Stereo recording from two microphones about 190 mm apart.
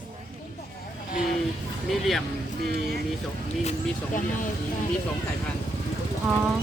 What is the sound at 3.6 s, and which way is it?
Speech, 35° left (ahead or behind).